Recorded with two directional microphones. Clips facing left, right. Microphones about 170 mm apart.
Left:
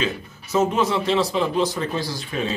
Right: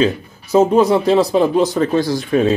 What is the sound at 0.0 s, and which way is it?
Speech, 35° right (ahead or behind).